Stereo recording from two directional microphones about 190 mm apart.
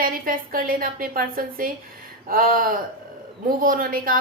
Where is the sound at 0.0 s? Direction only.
50° right (ahead or behind).